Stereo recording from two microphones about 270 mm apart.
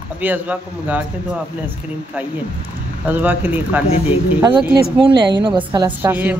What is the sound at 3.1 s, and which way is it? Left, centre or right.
Speech, centre.